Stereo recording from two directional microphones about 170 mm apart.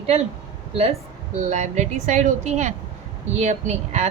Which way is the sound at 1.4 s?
45° right (ahead or behind).